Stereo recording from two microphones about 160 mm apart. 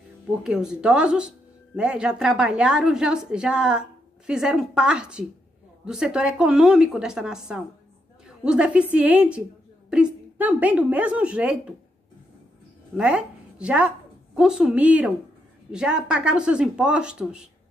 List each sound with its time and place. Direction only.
0.4 s a woman's voice: 5° right (ahead or behind)
12.9 s a woman's voice: 5° right (ahead or behind)